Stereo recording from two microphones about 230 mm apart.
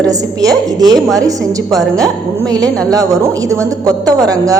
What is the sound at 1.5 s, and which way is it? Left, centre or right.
Speech, centre.